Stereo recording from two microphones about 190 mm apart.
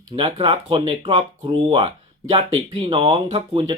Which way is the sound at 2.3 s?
25° right (ahead or behind).